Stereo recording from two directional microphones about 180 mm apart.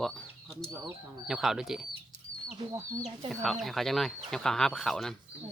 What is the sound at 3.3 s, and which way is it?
Speech, centre (ahead or behind).